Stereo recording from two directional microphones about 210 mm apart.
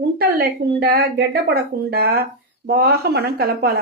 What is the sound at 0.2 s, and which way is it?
Speech, 50° right (ahead or behind).